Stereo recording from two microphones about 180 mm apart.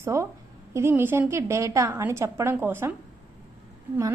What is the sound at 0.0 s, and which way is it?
A woman's voice, 15° right (ahead or behind).